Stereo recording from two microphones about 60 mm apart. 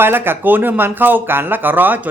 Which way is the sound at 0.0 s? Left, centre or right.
Right.